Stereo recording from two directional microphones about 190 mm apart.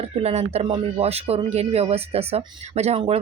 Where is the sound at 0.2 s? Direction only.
35° right (ahead or behind).